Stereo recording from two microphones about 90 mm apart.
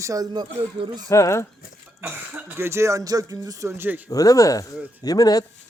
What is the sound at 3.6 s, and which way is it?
Speech, 25° right (ahead or behind).